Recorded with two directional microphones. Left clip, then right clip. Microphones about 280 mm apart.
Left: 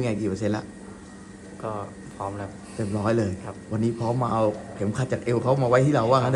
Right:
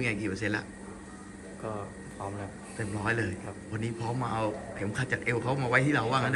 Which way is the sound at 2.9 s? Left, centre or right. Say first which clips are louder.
Left 6 dB; centre.